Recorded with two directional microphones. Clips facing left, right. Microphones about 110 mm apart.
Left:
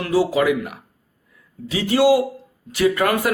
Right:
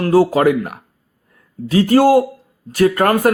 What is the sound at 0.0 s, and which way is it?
Speech, 50° right (ahead or behind).